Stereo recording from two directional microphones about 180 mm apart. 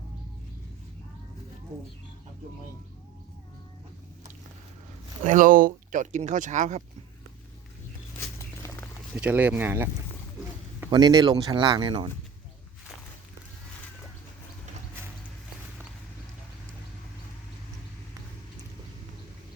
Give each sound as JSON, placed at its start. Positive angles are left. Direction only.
{"t": 5.2, "sound": "speech", "side_deg": -45}
{"t": 8.4, "sound": "a sound", "side_deg": 15}
{"t": 9.1, "sound": "speech", "side_deg": -10}
{"t": 10.8, "sound": "a man's voice", "side_deg": -25}